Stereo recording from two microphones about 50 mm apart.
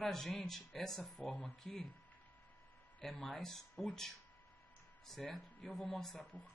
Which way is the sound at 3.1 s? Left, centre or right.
Centre.